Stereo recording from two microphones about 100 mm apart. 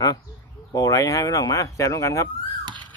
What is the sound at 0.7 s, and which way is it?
Speech, 35° left (ahead or behind).